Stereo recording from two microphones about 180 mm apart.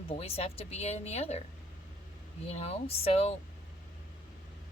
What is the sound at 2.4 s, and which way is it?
Speech, 35° left (ahead or behind).